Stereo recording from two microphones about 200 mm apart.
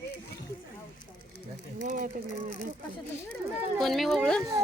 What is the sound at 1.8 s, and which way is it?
Speech, 40° right (ahead or behind).